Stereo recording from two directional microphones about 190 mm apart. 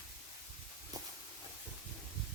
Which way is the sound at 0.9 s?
20° right (ahead or behind).